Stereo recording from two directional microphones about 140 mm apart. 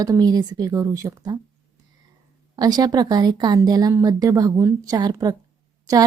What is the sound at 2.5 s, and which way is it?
A woman's voice, 25° right (ahead or behind).